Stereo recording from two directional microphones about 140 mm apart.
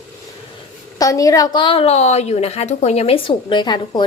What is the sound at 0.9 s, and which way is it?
A woman's voice, 25° left (ahead or behind).